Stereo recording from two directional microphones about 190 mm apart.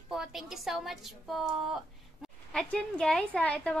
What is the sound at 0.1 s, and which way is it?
Speech, centre (ahead or behind).